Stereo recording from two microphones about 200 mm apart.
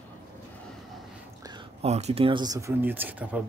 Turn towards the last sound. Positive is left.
turn(degrees=-10)  # may be behind; listen again after turning